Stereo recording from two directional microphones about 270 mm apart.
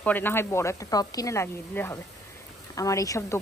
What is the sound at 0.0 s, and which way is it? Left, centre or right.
Speech, centre.